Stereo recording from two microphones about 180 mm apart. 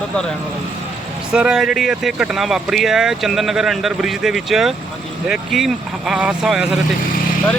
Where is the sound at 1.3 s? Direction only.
5° right (ahead or behind).